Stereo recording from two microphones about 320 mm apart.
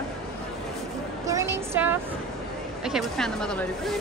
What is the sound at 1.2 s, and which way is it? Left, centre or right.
A woman's voice, centre.